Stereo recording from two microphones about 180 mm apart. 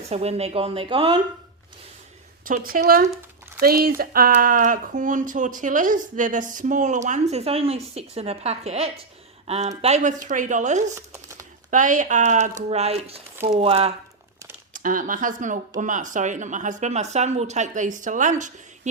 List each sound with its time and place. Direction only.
0.1 s speech: 35° right (ahead or behind)
2.4 s speech: 50° right (ahead or behind)
10.9 s crumpling: 15° right (ahead or behind)
11.7 s speech: 45° right (ahead or behind)
14.7 s speech: 50° right (ahead or behind)